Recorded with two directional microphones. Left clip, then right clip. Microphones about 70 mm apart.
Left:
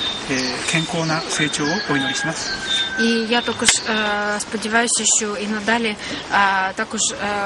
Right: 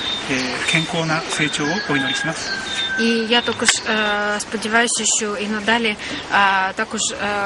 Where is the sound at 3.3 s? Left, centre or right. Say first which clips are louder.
Right 1 dB; right.